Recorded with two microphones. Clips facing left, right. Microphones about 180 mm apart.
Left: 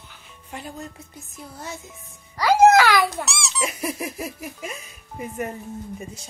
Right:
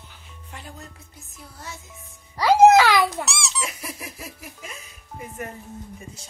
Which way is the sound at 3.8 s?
20° left (ahead or behind).